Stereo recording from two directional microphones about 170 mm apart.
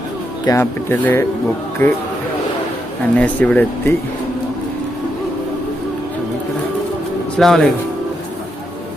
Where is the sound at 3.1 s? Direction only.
10° left (ahead or behind).